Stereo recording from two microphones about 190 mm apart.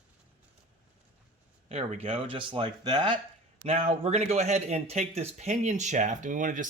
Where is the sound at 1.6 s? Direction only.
35° right (ahead or behind).